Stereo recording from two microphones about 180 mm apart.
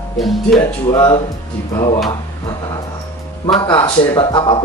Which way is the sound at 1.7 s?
20° left (ahead or behind).